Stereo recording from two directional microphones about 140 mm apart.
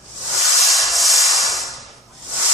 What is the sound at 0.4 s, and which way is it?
Rub, centre (ahead or behind).